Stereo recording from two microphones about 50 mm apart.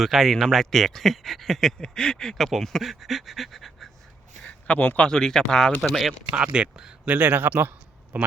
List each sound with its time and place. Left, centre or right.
0.0 s speech: centre
2.5 s speech: centre
4.4 s a sound: left
4.9 s speech: centre
5.8 s speech: centre
6.3 s speech: centre
7.1 s a man's voice: right